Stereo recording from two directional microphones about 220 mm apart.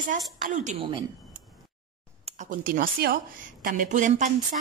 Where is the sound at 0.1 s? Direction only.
35° right (ahead or behind).